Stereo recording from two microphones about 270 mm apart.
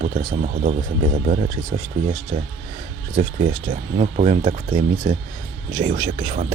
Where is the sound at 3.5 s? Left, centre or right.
Right.